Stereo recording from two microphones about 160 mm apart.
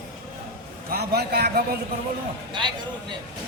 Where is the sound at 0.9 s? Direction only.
80° right.